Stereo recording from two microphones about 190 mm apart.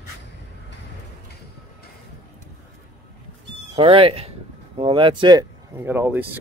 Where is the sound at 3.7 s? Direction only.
30° right (ahead or behind).